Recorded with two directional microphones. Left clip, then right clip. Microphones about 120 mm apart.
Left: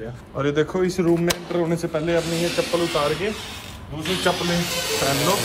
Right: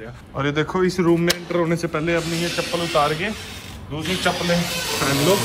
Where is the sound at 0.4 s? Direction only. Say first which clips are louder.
Even; 20° left (ahead or behind).